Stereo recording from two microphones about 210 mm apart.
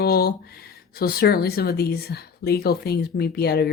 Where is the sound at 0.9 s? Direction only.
45° left (ahead or behind).